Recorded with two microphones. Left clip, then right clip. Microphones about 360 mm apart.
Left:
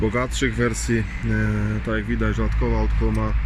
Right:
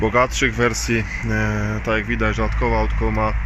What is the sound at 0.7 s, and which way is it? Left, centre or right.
Speech, right.